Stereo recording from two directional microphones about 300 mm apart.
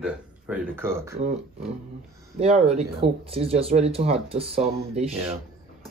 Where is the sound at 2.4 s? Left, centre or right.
Right.